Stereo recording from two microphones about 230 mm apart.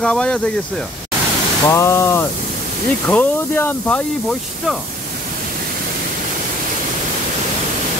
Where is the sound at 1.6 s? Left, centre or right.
Centre.